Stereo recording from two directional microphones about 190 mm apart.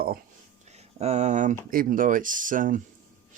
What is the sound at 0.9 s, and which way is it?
Speech, 35° right (ahead or behind).